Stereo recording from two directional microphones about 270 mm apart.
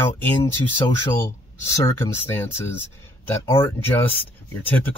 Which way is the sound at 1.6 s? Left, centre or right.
Centre.